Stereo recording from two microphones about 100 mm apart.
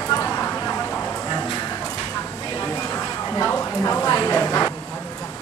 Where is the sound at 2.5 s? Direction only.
30° left (ahead or behind).